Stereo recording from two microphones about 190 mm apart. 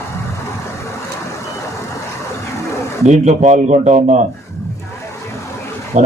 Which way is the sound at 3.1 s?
35° right (ahead or behind).